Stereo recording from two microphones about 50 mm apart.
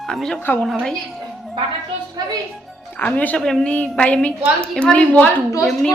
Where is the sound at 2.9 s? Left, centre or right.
Left.